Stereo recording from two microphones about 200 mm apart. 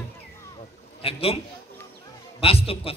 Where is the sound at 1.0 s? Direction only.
30° left (ahead or behind).